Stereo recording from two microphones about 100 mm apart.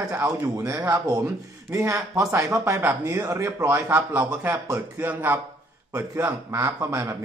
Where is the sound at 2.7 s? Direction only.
20° right (ahead or behind).